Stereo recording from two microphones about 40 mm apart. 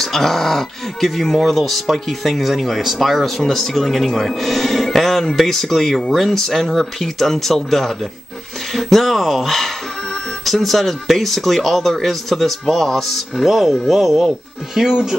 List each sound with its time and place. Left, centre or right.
0.0 s speech: centre
13.5 s speech: centre